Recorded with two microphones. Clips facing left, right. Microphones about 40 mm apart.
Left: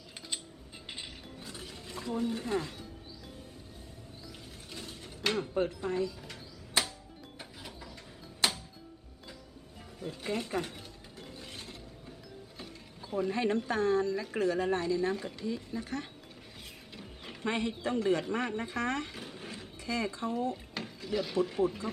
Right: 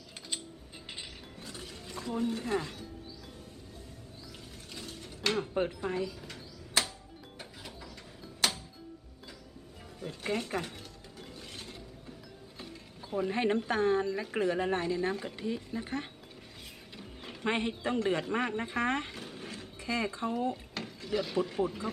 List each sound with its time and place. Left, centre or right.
0.9 s a sound: centre
4.7 s mechanisms: centre
5.5 s speech: centre
6.2 s a sound: centre
10.0 s speech: centre
11.2 s mechanisms: centre
13.1 s speech: centre
13.3 s speech: right
16.9 s mechanisms: centre
17.4 s speech: right
19.1 s a sound: centre
19.8 s speech: right
20.7 s wood: centre
21.7 s speech: centre